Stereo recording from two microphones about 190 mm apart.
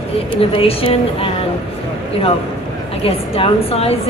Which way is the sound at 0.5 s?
30° left (ahead or behind).